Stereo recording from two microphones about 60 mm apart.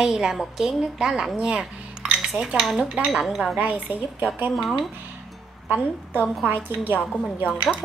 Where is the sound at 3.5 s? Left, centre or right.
Right.